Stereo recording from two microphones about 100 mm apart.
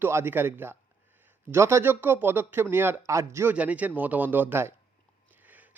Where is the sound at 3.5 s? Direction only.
15° right (ahead or behind).